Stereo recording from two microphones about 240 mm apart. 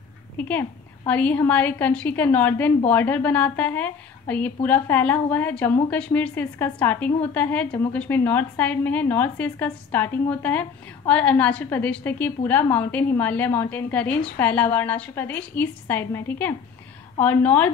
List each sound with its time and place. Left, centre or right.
0.4 s a woman's voice: centre